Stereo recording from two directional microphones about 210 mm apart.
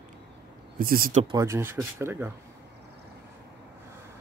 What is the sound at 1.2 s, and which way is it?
Speech, 20° right (ahead or behind).